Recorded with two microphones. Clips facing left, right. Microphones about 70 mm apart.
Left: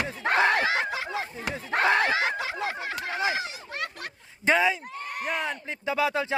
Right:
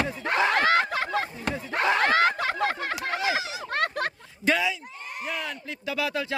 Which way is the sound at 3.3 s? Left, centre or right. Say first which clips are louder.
Right 3 dB; right.